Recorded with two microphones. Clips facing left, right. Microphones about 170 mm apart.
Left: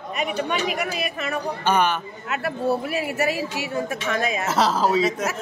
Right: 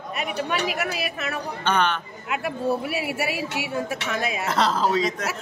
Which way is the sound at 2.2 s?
10° right (ahead or behind).